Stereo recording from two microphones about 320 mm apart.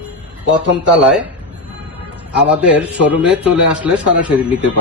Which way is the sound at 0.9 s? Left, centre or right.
Centre.